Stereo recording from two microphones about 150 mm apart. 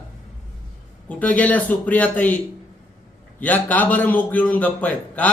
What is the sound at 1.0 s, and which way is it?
Speech, 10° left (ahead or behind).